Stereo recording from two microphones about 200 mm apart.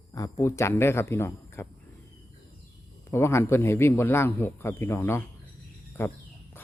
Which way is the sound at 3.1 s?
10° left (ahead or behind).